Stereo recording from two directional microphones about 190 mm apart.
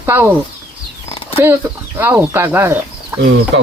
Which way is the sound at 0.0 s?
10° right (ahead or behind).